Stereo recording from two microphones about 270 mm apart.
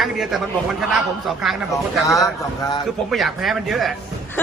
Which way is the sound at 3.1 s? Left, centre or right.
Centre.